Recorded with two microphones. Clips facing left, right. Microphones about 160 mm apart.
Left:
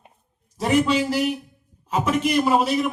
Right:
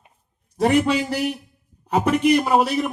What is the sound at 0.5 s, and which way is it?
Speech, 60° right (ahead or behind).